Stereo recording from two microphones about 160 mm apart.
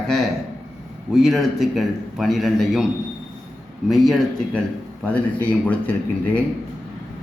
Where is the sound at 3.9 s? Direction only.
Centre (ahead or behind).